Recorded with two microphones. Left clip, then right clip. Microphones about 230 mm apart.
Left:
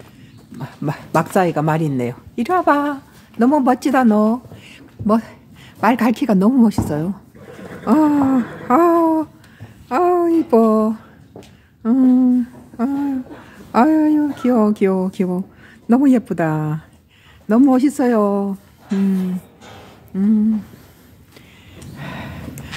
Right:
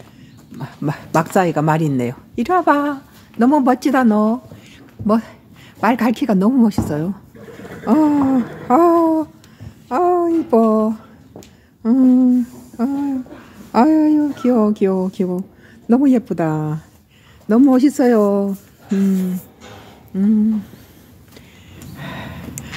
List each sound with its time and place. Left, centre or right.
0.6 s speech: centre
9.8 s a sound: centre
11.8 s humming: centre
13.7 s speech: centre
20.1 s speech: centre
21.9 s gasp: centre